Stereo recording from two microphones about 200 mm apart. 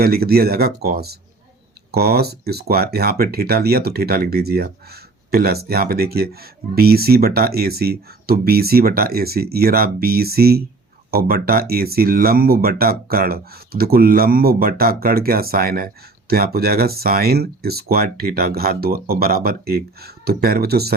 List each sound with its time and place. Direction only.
0.0 s speech: 50° right (ahead or behind)